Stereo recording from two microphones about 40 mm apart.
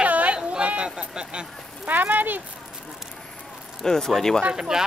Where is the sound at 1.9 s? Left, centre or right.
Right.